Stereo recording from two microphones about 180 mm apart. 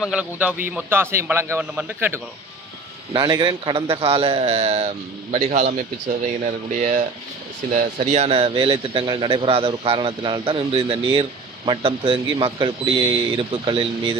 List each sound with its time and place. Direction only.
0.0 s a man's voice: 5° right (ahead or behind)
3.1 s a man's voice: 25° right (ahead or behind)